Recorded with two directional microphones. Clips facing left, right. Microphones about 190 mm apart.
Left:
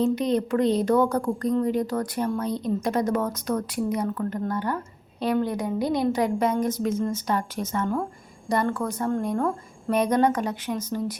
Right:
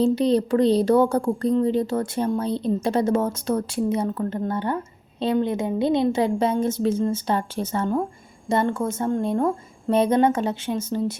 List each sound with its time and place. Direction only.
0.0 s speech: 30° right (ahead or behind)